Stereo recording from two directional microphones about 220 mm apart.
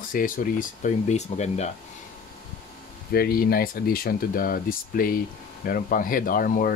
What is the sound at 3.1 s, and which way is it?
Speech, 45° left (ahead or behind).